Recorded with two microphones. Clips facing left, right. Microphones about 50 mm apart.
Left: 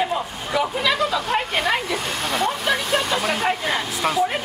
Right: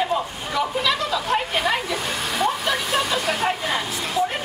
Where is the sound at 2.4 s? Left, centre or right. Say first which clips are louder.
Even; centre.